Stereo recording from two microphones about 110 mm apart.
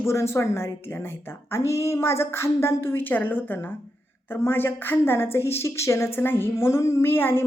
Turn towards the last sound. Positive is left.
turn(degrees=20)  # may be behind; listen again after turning